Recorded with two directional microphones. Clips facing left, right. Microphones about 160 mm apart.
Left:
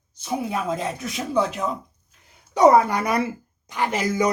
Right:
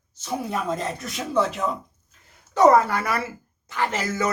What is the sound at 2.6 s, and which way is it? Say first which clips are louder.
Speech: left 1 dB; 15° left (ahead or behind).